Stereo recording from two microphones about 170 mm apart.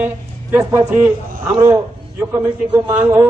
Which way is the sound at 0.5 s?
10° right (ahead or behind).